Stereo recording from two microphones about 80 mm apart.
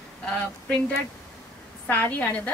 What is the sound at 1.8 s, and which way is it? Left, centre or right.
Speech, left.